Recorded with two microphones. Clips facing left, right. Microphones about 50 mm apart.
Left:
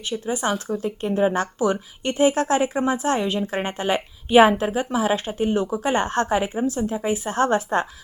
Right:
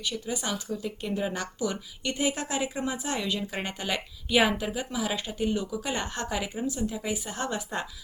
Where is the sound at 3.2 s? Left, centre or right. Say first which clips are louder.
Left 7 dB; left.